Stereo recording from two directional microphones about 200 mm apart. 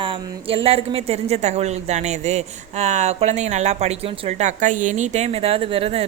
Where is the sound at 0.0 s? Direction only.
25° right (ahead or behind).